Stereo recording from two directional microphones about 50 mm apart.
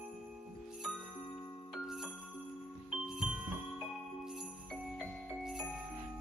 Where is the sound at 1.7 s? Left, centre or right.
Centre.